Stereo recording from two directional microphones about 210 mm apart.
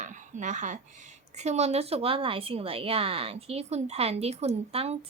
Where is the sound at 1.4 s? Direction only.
30° right (ahead or behind).